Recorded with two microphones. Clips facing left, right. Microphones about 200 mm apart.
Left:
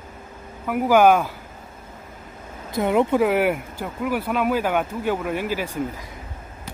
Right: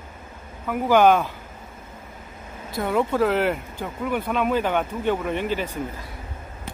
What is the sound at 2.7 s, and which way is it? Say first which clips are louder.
Speech: left 4 dB; 20° left (ahead or behind).